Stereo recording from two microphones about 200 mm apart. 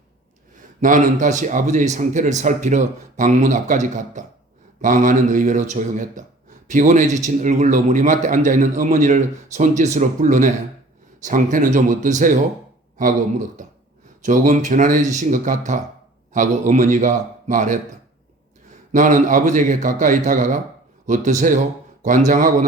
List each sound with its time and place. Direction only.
0.5 s a man's voice: 40° right (ahead or behind)
14.3 s a man's voice: 40° right (ahead or behind)
18.9 s a man's voice: 40° right (ahead or behind)